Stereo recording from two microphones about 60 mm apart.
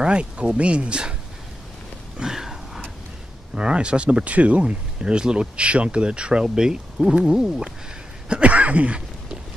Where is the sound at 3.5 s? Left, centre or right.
Centre.